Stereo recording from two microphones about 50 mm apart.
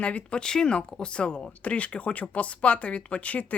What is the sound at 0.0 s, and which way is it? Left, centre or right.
Speech, left.